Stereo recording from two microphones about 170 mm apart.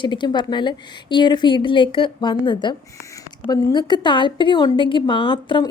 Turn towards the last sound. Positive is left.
turn(degrees=25)  # may be behind; listen again after turning